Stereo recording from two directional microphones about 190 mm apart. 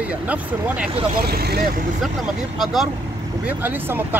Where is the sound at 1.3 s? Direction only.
55° right (ahead or behind).